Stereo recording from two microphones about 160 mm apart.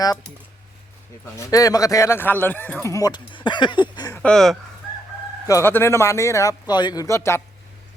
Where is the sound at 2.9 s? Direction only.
25° left (ahead or behind).